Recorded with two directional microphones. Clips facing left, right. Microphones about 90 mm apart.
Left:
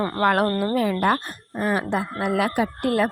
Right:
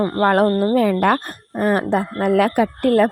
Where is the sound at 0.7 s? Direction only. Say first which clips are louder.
Right 5 dB; 45° right (ahead or behind).